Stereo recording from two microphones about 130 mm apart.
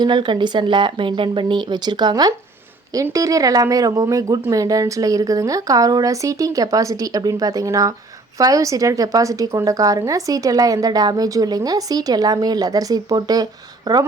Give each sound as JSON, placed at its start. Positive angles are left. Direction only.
{"t": 0.0, "sound": "a woman's voice", "side_deg": -35}